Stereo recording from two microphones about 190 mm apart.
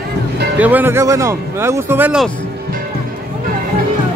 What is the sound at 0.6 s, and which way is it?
Speech, 10° right (ahead or behind).